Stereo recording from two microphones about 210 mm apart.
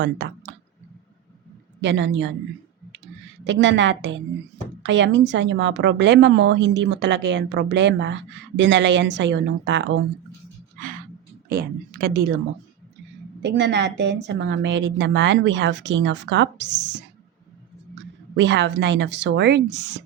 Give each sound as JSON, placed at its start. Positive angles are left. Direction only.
{"t": 0.0, "sound": "speech", "side_deg": -55}
{"t": 1.8, "sound": "a woman's voice", "side_deg": -55}
{"t": 3.4, "sound": "a woman's voice", "side_deg": -60}
{"t": 11.4, "sound": "speech", "side_deg": -45}
{"t": 13.4, "sound": "a woman's voice", "side_deg": -55}
{"t": 18.3, "sound": "a woman's voice", "side_deg": -55}